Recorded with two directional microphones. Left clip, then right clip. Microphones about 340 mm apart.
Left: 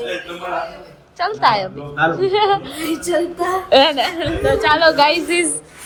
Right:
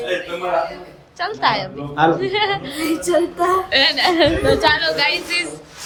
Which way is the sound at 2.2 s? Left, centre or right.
Centre.